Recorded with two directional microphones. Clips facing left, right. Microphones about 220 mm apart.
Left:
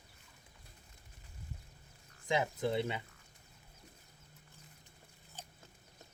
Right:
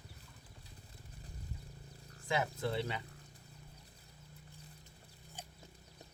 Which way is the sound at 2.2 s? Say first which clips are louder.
Left 2 dB; 20° left (ahead or behind).